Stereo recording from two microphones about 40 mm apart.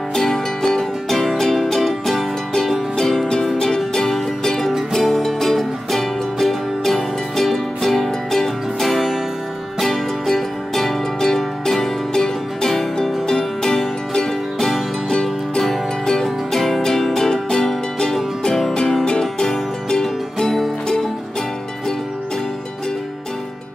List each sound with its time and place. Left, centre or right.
0.1 s music: centre
3.5 s music: centre